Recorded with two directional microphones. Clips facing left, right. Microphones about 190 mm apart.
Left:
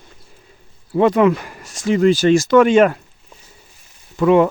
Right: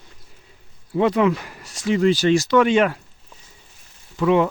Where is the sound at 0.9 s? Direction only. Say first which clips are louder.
Left 4 dB; 50° left (ahead or behind).